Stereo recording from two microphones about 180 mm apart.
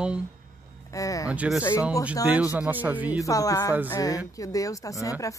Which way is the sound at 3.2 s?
20° left (ahead or behind).